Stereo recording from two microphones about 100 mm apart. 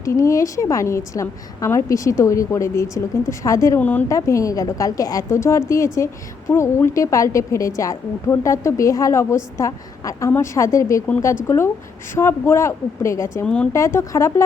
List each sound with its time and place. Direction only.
0.0 s a woman's voice: 30° left (ahead or behind)
3.8 s speech: 15° left (ahead or behind)
4.1 s a woman's voice: 30° left (ahead or behind)
13.4 s speech: 10° left (ahead or behind)
13.7 s a woman's voice: 30° left (ahead or behind)